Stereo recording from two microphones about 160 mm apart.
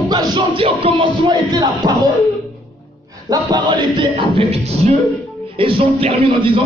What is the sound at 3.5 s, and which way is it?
A man's voice, 30° right (ahead or behind).